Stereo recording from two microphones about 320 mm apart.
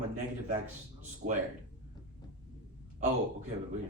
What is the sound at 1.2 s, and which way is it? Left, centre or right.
Speech, right.